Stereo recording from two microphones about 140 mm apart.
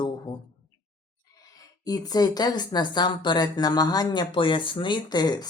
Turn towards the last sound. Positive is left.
turn(degrees=30)  # may be behind; listen again after turning